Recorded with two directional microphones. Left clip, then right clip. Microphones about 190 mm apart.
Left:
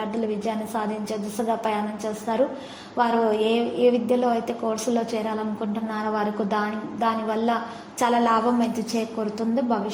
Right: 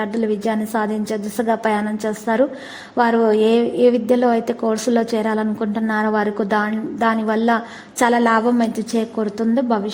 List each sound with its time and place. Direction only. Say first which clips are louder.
0.0 s a woman's voice: right 6 dB; 35° right (ahead or behind)